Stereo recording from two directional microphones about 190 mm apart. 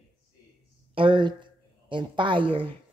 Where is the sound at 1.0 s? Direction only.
25° right (ahead or behind).